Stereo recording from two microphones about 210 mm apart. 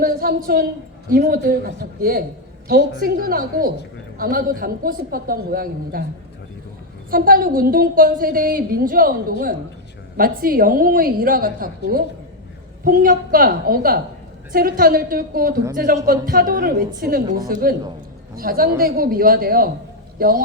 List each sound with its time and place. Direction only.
0.0 s a woman's voice: 45° right (ahead or behind)
7.1 s a woman's voice: 45° right (ahead or behind)
10.2 s a woman's voice: 45° right (ahead or behind)